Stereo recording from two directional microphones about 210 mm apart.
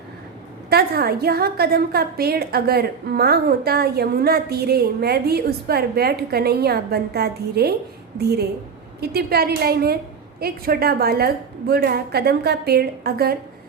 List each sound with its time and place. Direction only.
0.7 s a woman's voice: 50° right (ahead or behind)